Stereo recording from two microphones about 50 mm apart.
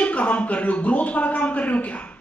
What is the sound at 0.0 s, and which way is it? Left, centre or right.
A man's voice, left.